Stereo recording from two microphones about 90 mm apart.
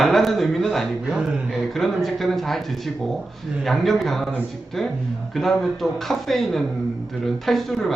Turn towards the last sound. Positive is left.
turn(degrees=0)  # may be behind; listen again after turning